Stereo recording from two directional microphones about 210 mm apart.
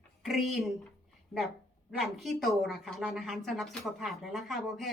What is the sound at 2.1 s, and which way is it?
A woman's voice, centre (ahead or behind).